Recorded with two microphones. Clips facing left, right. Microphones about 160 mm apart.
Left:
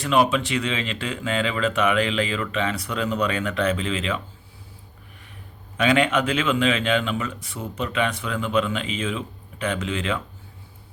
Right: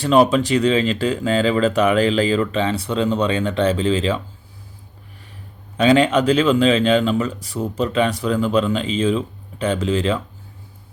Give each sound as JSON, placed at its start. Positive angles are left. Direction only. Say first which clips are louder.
{"t": 0.0, "sound": "speech", "louder": "right 6 dB", "side_deg": -35}
{"t": 5.7, "sound": "speech", "louder": "right 5 dB", "side_deg": -30}